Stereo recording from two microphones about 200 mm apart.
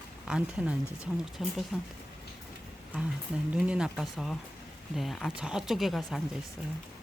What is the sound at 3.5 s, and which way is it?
Speech, 5° right (ahead or behind).